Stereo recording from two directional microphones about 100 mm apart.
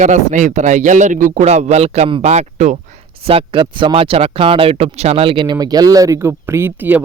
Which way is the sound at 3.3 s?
65° right (ahead or behind).